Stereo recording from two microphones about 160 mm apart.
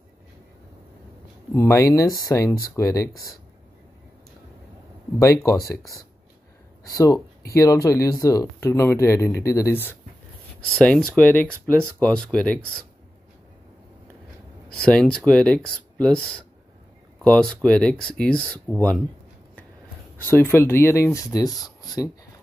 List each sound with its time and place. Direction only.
1.5 s speech: 20° left (ahead or behind)
5.2 s speech: 20° left (ahead or behind)
7.5 s speech: 20° left (ahead or behind)
14.7 s speech: 5° left (ahead or behind)
20.2 s speech: 15° left (ahead or behind)